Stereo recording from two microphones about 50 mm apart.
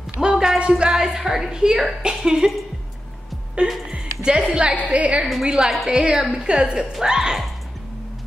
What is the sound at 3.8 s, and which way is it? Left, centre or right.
Speech, centre.